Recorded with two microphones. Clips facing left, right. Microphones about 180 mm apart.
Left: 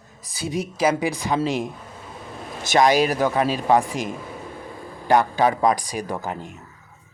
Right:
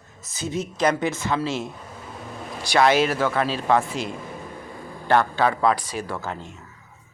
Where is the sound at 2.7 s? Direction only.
15° left (ahead or behind).